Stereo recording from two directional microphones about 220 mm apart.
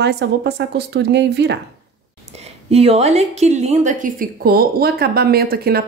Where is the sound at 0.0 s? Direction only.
50° right (ahead or behind).